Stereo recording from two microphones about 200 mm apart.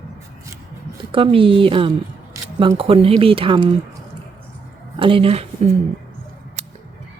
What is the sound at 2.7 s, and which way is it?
Speech, 30° right (ahead or behind).